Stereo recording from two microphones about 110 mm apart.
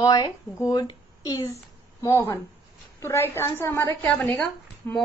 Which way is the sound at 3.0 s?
25° left (ahead or behind).